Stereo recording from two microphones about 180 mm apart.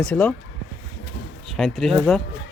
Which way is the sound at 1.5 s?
Centre (ahead or behind).